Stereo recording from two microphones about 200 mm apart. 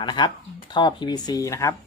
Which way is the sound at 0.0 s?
20° left (ahead or behind).